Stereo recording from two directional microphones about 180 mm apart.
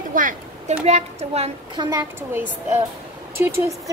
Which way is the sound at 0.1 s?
50° right (ahead or behind).